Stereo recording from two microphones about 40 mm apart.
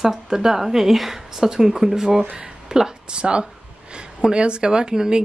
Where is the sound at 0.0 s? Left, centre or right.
Centre.